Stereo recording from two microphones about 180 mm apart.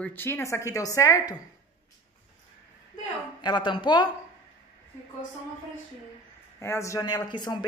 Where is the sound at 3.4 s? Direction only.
25° left (ahead or behind).